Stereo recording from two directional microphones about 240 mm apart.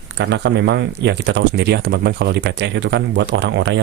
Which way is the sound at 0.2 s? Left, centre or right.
Right.